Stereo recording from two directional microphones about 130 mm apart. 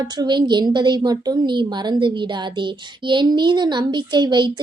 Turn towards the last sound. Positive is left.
turn(degrees=-35)  # may be behind; listen again after turning